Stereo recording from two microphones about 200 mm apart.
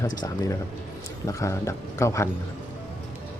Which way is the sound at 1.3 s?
15° left (ahead or behind).